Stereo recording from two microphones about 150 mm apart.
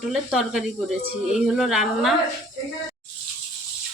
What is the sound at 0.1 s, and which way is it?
A woman's voice, 5° right (ahead or behind).